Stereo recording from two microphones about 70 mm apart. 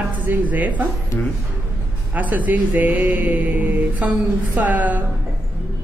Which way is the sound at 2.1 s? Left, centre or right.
Right.